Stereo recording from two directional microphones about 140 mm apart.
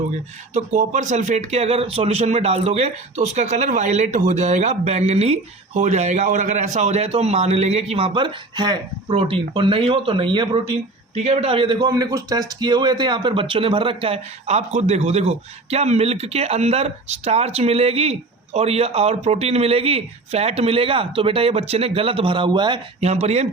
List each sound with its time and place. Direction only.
0.5 s a man's voice: 60° right (ahead or behind); by 10.6 s 35° right (ahead or behind)
11.1 s a man's voice: 50° right (ahead or behind); by 22.8 s 35° right (ahead or behind)
23.0 s a man's voice: 50° right (ahead or behind)